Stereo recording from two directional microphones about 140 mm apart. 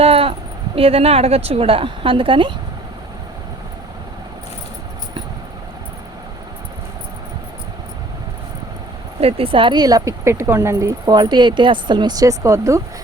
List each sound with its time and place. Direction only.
0.0 s a sound: 40° right (ahead or behind)
0.8 s a woman's voice: 45° right (ahead or behind)
9.2 s speech: 40° right (ahead or behind); by 12.8 s 20° right (ahead or behind)